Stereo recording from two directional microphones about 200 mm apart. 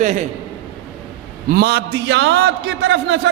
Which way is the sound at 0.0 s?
40° right (ahead or behind).